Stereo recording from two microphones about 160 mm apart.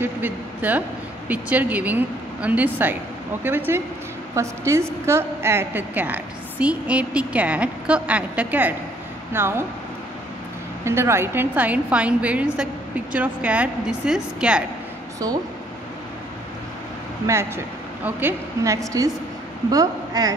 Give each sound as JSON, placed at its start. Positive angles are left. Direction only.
{"t": 0.0, "sound": "a man's voice", "side_deg": -10}
{"t": 10.8, "sound": "a woman's voice", "side_deg": -15}
{"t": 18.0, "sound": "a woman's voice", "side_deg": -15}